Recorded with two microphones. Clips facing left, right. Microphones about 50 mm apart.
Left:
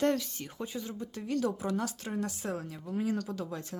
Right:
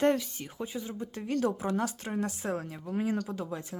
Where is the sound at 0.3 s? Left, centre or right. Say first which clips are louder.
Right 1 dB; centre; by 3.1 s right.